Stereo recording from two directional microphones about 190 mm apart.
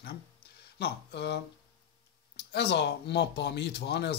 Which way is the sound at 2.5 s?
60° left (ahead or behind).